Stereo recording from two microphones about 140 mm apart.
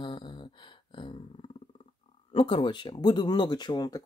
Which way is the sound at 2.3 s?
40° left (ahead or behind).